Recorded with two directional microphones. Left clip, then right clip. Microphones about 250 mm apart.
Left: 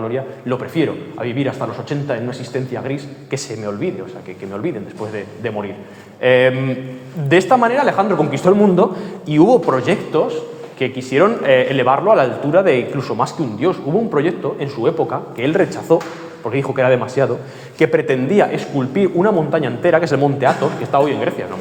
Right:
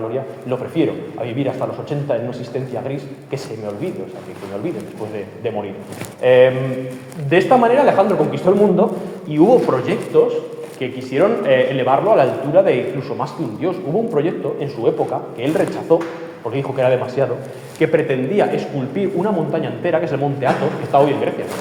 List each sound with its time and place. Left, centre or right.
0.1 s a man's voice: left
6.2 s a man's voice: left